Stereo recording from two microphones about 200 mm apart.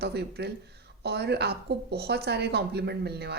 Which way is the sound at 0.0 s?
55° right (ahead or behind).